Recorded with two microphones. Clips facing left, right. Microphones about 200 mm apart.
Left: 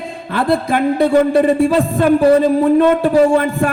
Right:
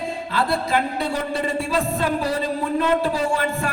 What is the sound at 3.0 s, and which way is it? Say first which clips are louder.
Speech: left 10 dB; 55° left (ahead or behind).